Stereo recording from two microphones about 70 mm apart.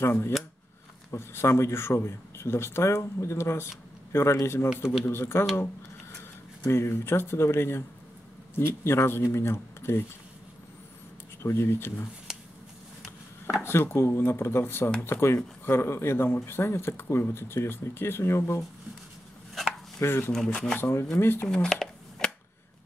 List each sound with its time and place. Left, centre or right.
0.0 s speech: left
6.7 s speech: left
11.4 s speech: left
13.7 s speech: left
20.0 s speech: left
20.3 s speech: centre
21.2 s speech: left
21.5 s shuffling cards: centre